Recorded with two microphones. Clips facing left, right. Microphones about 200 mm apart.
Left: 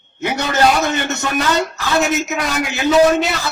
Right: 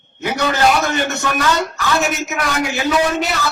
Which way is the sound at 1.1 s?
25° left (ahead or behind).